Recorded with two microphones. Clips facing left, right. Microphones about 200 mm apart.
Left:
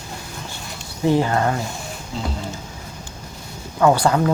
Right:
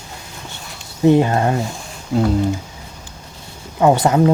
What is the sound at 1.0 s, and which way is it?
Speech, 20° right (ahead or behind).